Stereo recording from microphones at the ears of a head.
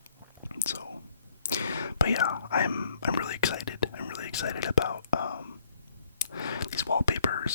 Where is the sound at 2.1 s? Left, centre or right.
Left.